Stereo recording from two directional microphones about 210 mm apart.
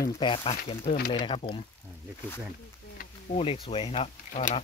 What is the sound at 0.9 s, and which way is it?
Speech, 40° left (ahead or behind).